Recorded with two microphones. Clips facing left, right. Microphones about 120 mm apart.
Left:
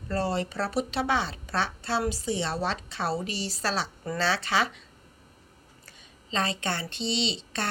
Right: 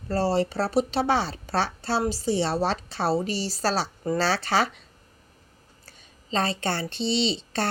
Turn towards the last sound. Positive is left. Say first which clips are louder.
# right 5 dB
turn(degrees=-35)  # may be behind; listen again after turning